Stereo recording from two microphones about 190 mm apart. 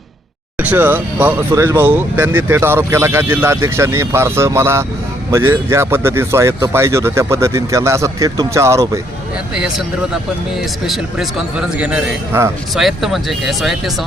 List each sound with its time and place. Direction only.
0.6 s speech: 10° right (ahead or behind)
9.6 s a man's voice: 5° right (ahead or behind)
10.8 s a man's voice: centre (ahead or behind)